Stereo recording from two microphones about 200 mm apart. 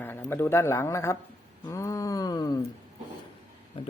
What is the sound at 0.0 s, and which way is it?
A man's voice, 10° left (ahead or behind).